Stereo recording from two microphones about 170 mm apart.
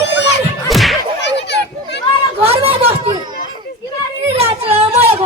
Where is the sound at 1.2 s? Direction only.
90° left.